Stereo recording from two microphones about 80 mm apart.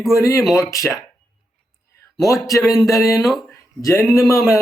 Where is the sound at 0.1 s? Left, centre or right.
Left.